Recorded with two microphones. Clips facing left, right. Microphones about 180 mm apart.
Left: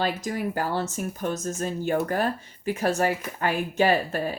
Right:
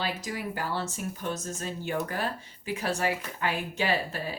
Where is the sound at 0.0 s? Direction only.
50° left (ahead or behind).